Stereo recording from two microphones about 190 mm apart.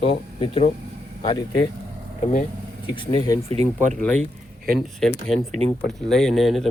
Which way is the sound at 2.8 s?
25° left (ahead or behind).